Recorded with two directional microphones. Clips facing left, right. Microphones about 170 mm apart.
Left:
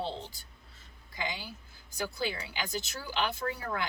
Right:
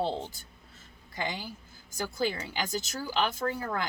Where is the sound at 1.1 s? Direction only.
50° right (ahead or behind).